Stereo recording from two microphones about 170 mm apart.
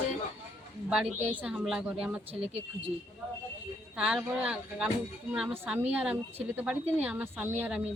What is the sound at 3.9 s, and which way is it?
Speech, 5° right (ahead or behind).